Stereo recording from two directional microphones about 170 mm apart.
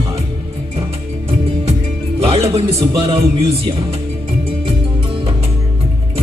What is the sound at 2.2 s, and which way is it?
A man's voice, 35° right (ahead or behind).